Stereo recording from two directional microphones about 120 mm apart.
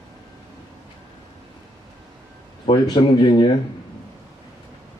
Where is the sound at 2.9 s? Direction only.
40° left (ahead or behind).